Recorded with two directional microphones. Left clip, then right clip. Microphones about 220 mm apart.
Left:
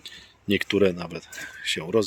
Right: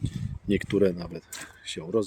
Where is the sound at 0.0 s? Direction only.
10° right (ahead or behind).